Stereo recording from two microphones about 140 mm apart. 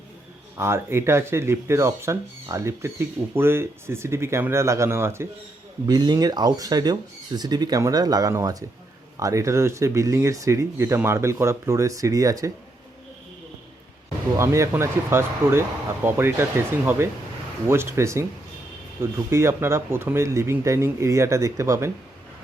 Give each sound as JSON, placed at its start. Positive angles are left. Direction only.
{"t": 0.5, "sound": "speech", "side_deg": -20}
{"t": 5.8, "sound": "speech", "side_deg": -30}
{"t": 14.3, "sound": "speech", "side_deg": -20}
{"t": 19.3, "sound": "speech", "side_deg": -20}